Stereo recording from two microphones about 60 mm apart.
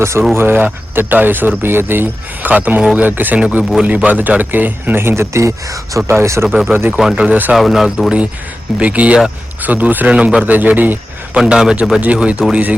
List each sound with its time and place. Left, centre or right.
0.0 s speech: right
0.3 s speech: right
6.1 s speech: right
6.5 s speech: centre
7.2 s speech: right
7.5 s speech: centre
8.8 s speech: right
11.4 s speech: centre